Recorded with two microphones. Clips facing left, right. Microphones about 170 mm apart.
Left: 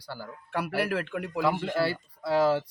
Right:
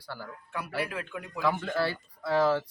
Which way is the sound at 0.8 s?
70° left (ahead or behind).